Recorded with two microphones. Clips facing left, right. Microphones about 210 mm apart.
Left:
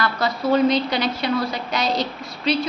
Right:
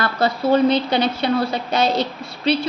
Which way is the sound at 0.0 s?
30° right (ahead or behind).